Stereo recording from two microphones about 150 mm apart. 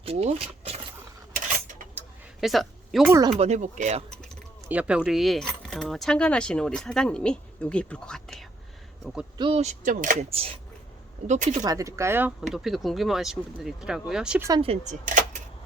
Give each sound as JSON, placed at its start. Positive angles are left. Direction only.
{"t": 0.0, "sound": "speech", "side_deg": -40}
{"t": 2.4, "sound": "speech", "side_deg": 0}
{"t": 3.2, "sound": "speech", "side_deg": -45}
{"t": 4.7, "sound": "speech", "side_deg": -10}
{"t": 9.4, "sound": "speech", "side_deg": -35}
{"t": 9.6, "sound": "speech", "side_deg": -60}
{"t": 10.2, "sound": "speech", "side_deg": -40}
{"t": 11.3, "sound": "speech", "side_deg": -55}
{"t": 11.6, "sound": "speech", "side_deg": -25}
{"t": 12.4, "sound": "speech", "side_deg": 0}
{"t": 14.6, "sound": "speech", "side_deg": -40}
{"t": 15.0, "sound": "a sound", "side_deg": -60}